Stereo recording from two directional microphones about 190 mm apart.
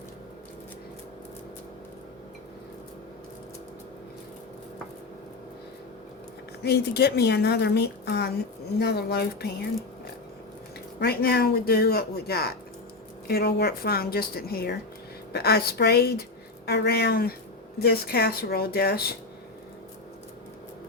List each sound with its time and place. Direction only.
6.6 s a woman's voice: 60° left (ahead or behind)
11.0 s a woman's voice: 55° left (ahead or behind)